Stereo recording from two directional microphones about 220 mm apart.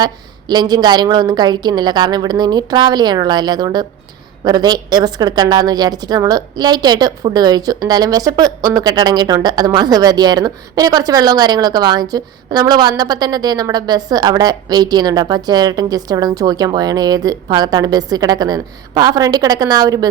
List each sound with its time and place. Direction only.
0.0 s a woman's voice: 20° right (ahead or behind)